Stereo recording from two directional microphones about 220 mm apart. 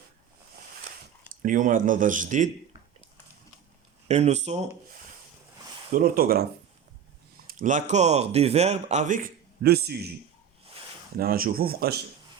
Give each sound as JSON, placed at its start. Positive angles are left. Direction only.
{"t": 1.4, "sound": "speech", "side_deg": -35}
{"t": 4.1, "sound": "speech", "side_deg": -30}
{"t": 5.9, "sound": "speech", "side_deg": -40}
{"t": 7.4, "sound": "speech", "side_deg": -35}
{"t": 11.2, "sound": "speech", "side_deg": -40}